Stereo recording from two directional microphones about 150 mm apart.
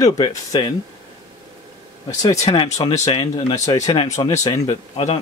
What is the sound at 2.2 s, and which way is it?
Speech, 25° left (ahead or behind).